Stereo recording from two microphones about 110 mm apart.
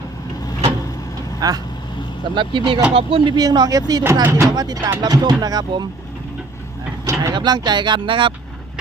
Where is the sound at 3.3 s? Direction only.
40° right (ahead or behind).